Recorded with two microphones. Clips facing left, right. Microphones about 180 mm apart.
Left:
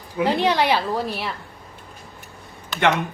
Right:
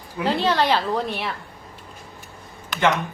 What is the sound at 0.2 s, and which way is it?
Speech, 15° left (ahead or behind).